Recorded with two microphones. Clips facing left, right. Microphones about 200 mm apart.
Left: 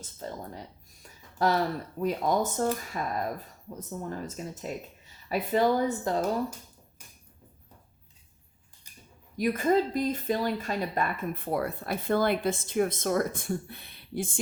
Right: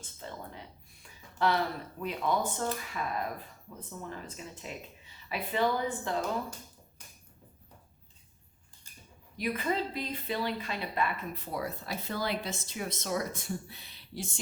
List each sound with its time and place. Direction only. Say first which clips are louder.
0.0 s a sound: left 5 dB; 40° left (ahead or behind)
1.0 s speech: left 3 dB; 40° left (ahead or behind)
9.4 s speech: left 7 dB; 45° left (ahead or behind)